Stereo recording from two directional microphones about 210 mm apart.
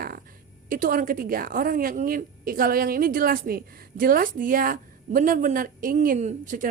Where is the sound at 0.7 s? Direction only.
40° right (ahead or behind).